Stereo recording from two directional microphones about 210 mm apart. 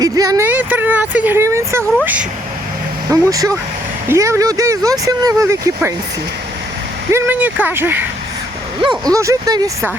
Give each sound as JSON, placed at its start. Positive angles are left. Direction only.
{"t": 0.0, "sound": "speech", "side_deg": -15}
{"t": 7.1, "sound": "speech", "side_deg": -10}
{"t": 8.8, "sound": "speech", "side_deg": -20}